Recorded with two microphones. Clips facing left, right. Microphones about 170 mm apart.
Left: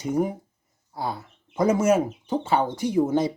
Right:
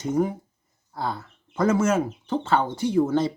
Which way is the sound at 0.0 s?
10° left (ahead or behind).